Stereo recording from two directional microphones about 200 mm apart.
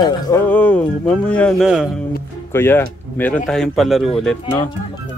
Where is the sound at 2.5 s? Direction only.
10° left (ahead or behind).